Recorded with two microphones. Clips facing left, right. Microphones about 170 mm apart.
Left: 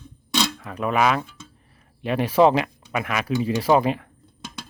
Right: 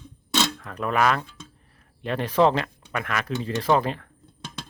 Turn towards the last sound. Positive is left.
turn(degrees=10)  # may be behind; listen again after turning